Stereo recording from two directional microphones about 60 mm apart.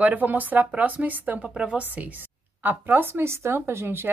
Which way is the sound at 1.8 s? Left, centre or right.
Right.